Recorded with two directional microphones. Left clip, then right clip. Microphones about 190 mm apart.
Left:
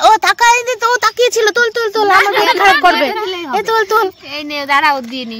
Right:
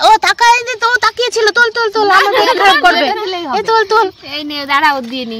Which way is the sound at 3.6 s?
15° left (ahead or behind).